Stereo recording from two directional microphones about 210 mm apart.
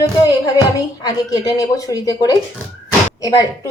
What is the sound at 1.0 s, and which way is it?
A woman's voice, 20° left (ahead or behind).